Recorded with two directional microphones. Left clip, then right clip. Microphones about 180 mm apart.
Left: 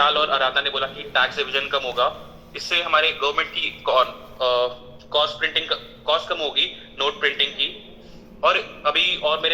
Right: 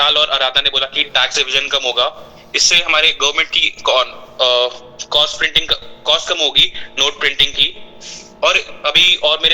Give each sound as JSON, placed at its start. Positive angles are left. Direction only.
{"t": 0.0, "sound": "a man's voice", "side_deg": -45}